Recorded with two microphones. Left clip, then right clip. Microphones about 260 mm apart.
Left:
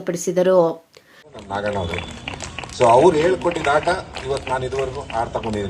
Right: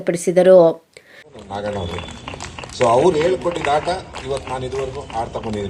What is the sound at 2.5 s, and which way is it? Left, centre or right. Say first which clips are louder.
Speech: left 2 dB; centre.